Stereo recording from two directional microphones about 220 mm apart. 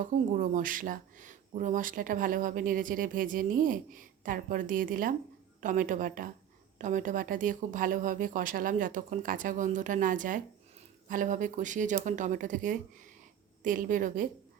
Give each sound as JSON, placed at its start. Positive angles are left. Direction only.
{"t": 0.0, "sound": "speech", "side_deg": -35}